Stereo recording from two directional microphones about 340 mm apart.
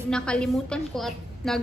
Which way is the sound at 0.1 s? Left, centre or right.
Centre.